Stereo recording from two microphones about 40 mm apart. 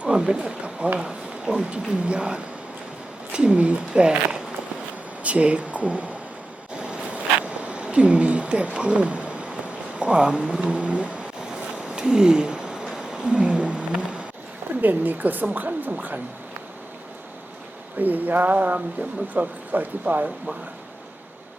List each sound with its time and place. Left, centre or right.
0.0 s speech: right
6.7 s a sound: right
10.0 s speech: right
10.7 s vehicle: right
11.9 s a sound: centre
14.8 s speech: right
18.0 s speech: right